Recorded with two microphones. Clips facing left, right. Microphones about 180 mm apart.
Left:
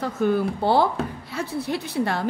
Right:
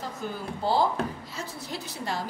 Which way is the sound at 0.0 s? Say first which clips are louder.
Left 12 dB; 70° left (ahead or behind).